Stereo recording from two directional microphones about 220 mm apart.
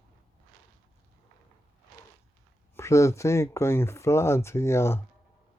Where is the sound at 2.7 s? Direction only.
15° left (ahead or behind).